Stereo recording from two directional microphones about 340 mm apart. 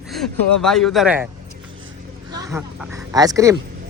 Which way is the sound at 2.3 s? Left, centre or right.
Centre.